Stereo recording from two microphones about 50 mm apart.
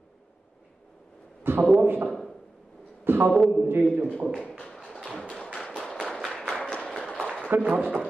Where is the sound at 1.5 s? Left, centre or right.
Right.